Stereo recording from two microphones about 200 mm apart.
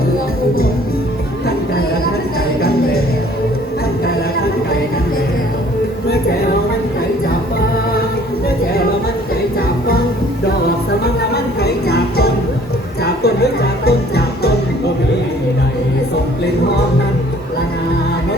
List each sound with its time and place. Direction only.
2.6 s music: 50° left (ahead or behind)
11.6 s music: 55° left (ahead or behind)